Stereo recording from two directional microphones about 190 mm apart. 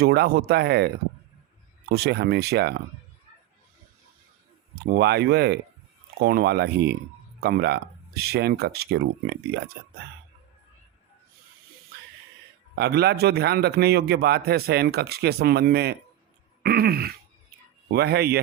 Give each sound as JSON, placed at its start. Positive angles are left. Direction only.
{"t": 0.0, "sound": "a man's voice", "side_deg": -55}
{"t": 1.9, "sound": "a man's voice", "side_deg": -60}
{"t": 4.7, "sound": "a man's voice", "side_deg": -60}
{"t": 12.7, "sound": "a man's voice", "side_deg": -60}
{"t": 16.6, "sound": "throat clearing", "side_deg": -55}
{"t": 17.9, "sound": "a man's voice", "side_deg": -55}